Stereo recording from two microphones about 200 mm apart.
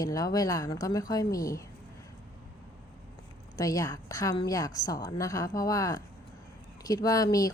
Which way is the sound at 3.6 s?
15° left (ahead or behind).